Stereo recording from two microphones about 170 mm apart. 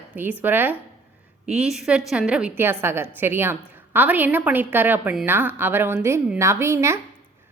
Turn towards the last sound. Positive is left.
turn(degrees=-15)  # may be behind; listen again after turning